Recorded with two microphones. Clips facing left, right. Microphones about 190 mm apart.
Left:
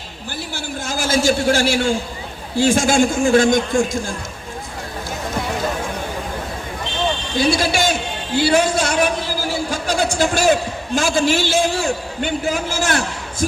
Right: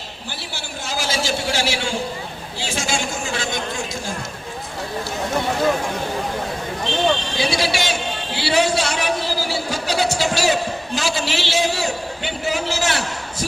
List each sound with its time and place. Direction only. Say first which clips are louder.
0.5 s a sound: left 3 dB; 50° left (ahead or behind)
2.6 s a man's voice: left 11 dB; 50° left (ahead or behind)
7.3 s a man's voice: left 4 dB; 50° left (ahead or behind)